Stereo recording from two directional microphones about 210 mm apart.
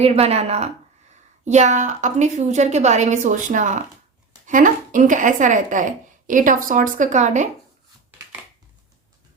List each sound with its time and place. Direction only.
0.0 s a woman's voice: 30° right (ahead or behind)